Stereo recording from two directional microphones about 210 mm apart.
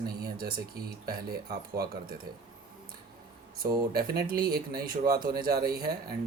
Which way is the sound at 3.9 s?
45° right (ahead or behind).